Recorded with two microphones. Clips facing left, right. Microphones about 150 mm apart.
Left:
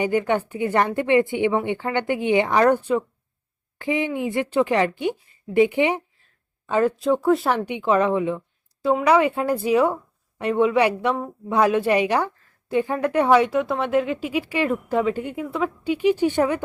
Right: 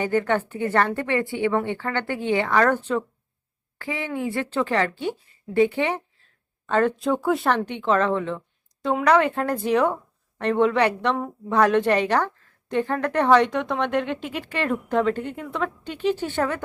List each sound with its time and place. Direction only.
0.0 s a woman's voice: 15° left (ahead or behind)